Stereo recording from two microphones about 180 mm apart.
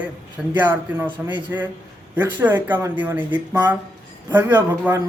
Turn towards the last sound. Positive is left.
turn(degrees=-10)  # may be behind; listen again after turning